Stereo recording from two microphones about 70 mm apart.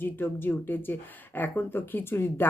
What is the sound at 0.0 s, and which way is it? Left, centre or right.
Speech, left.